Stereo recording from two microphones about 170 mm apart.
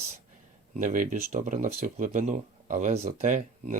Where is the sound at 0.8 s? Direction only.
50° right (ahead or behind).